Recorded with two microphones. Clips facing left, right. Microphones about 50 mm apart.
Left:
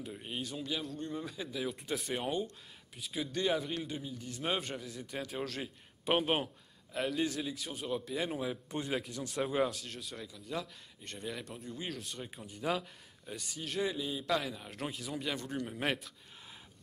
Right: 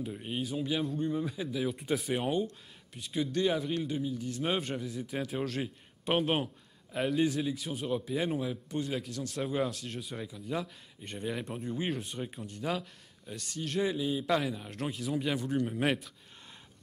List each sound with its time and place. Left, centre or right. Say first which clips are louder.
0.0 s speech: right 5 dB; centre
8.4 s a man's voice: right 3 dB; centre
10.1 s speech: right 4 dB; centre
12.3 s speech: left 2 dB; centre